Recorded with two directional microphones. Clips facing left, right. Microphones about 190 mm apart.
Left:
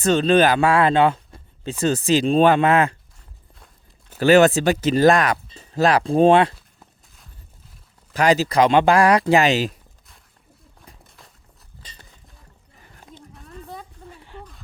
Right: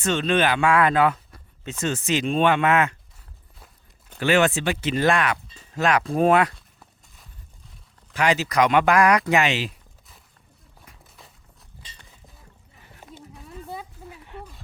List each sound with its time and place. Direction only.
0.0 s speech: 35° left (ahead or behind)
4.2 s speech: 40° left (ahead or behind)
8.1 s speech: 40° left (ahead or behind)
11.2 s walk: centre (ahead or behind)
13.1 s a sound: 5° right (ahead or behind)
14.2 s a sound: 30° left (ahead or behind)